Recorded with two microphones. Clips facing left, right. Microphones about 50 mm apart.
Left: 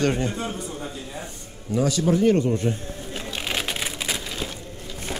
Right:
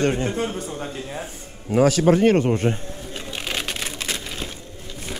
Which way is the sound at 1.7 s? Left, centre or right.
Right.